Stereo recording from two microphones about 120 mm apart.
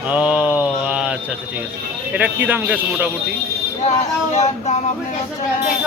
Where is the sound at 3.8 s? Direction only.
75° left (ahead or behind).